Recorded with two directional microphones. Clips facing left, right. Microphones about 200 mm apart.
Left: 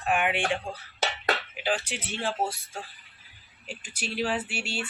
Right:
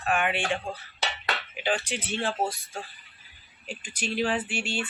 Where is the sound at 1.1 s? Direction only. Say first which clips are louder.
Left 4 dB; 40° left (ahead or behind).